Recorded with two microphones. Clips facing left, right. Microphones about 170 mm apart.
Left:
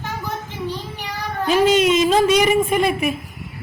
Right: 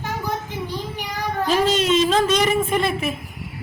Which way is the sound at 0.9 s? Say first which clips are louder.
Right 1 dB; 10° right (ahead or behind).